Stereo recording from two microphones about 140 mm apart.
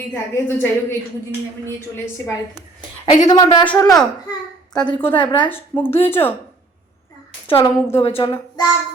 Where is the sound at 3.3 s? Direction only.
30° left (ahead or behind).